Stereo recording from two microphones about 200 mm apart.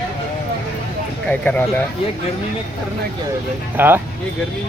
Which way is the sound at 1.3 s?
5° left (ahead or behind).